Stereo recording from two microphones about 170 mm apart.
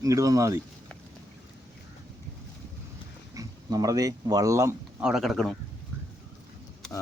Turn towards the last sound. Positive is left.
turn(degrees=0)  # may be behind; listen again after turning